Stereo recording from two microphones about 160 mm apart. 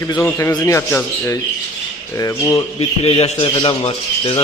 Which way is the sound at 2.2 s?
20° left (ahead or behind).